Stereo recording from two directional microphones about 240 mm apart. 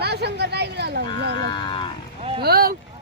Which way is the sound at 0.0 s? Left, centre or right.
Right.